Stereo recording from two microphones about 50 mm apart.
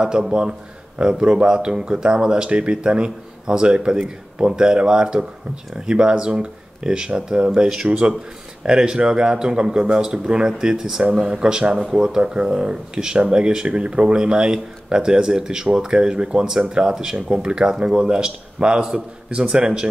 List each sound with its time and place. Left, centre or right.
0.0 s speech: centre